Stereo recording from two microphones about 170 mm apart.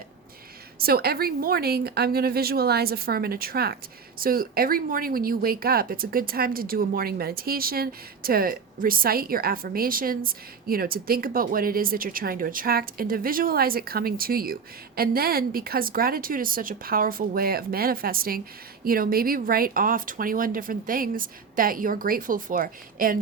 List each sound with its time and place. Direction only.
0.8 s speech: 65° right (ahead or behind)